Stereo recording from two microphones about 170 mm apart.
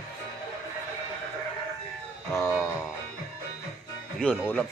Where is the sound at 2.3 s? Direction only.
15° left (ahead or behind).